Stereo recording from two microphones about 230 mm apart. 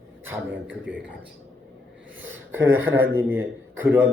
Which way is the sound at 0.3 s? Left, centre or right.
Centre.